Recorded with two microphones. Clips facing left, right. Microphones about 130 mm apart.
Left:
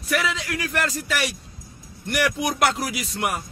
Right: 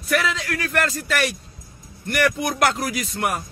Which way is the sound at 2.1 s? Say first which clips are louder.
Right 2 dB; 10° left (ahead or behind).